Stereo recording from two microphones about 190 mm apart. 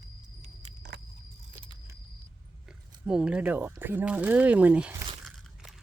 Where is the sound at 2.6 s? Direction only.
5° right (ahead or behind).